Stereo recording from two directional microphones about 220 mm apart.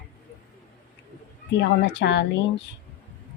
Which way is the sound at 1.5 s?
50° left (ahead or behind).